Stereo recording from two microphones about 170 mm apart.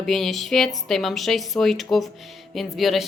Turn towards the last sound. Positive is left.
turn(degrees=0)  # may be behind; listen again after turning